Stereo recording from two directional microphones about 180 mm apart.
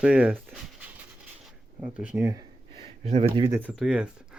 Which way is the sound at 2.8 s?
35° right (ahead or behind).